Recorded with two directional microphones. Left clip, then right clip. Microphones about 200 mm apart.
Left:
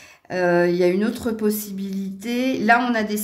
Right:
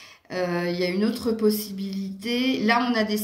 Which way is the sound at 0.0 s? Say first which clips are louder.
Left 6 dB; 45° left (ahead or behind).